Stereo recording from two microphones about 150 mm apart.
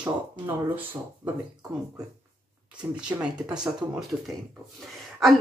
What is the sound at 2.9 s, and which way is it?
Speech, 5° right (ahead or behind).